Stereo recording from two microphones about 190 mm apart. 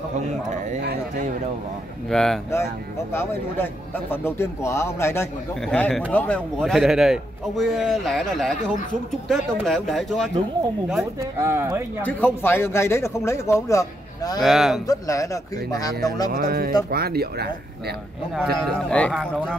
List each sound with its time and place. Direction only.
2.0 s speech: centre (ahead or behind)
2.5 s speech: 15° left (ahead or behind)
11.1 s speech: 15° right (ahead or behind)
12.0 s speech: 10° left (ahead or behind)
14.4 s speech: centre (ahead or behind)
14.9 s speech: 15° left (ahead or behind)
16.3 s music: 55° right (ahead or behind)
16.9 s speech: 55° right (ahead or behind)
18.3 s speech: centre (ahead or behind)